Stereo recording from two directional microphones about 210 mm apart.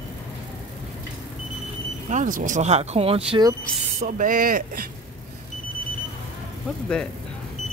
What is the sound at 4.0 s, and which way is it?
Speech, 40° right (ahead or behind).